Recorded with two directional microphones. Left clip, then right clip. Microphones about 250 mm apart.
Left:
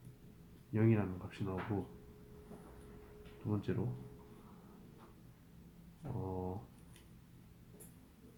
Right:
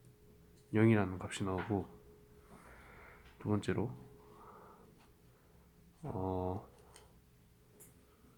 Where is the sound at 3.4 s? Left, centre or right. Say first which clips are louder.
Right 4 dB; right.